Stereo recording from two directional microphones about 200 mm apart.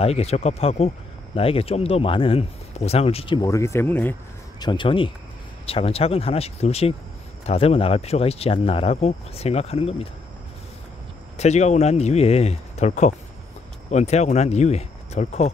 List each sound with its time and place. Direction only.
0.0 s speech: 30° left (ahead or behind); by 4.6 s 10° left (ahead or behind)
4.6 s speech: 25° left (ahead or behind)
11.3 s speech: 35° left (ahead or behind)